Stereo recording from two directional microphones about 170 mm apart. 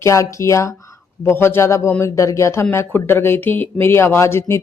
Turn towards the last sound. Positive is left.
turn(degrees=15)  # may be behind; listen again after turning